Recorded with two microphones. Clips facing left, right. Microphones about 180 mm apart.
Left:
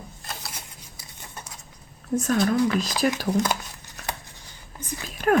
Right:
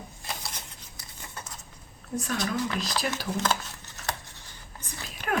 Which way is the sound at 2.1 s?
45° left (ahead or behind).